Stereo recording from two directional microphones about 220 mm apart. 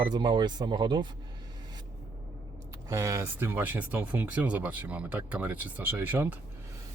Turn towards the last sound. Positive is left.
turn(degrees=-10)  # may be behind; listen again after turning